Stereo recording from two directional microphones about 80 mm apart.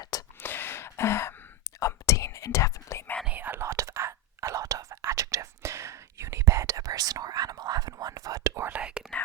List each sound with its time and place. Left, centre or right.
0.0 s whispering: left
0.4 s gasp: left
1.8 s whispering: left
3.2 s whispering: right
9.0 s whispering: centre